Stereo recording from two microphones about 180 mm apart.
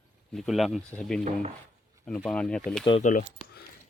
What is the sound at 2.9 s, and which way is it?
Speech, 35° left (ahead or behind).